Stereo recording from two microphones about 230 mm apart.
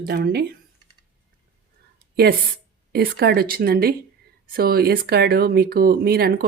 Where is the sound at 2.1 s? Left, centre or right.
Right.